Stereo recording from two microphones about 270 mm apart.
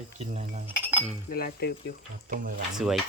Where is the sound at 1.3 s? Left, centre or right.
Left.